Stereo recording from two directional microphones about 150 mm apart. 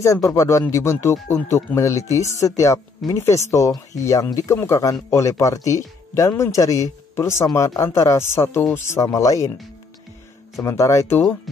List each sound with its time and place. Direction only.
0.0 s speech: 20° left (ahead or behind)
10.6 s speech: 20° left (ahead or behind)